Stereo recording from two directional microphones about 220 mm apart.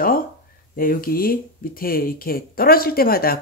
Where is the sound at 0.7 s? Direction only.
40° left (ahead or behind).